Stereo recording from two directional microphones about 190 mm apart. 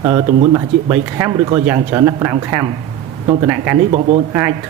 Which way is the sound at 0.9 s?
10° right (ahead or behind).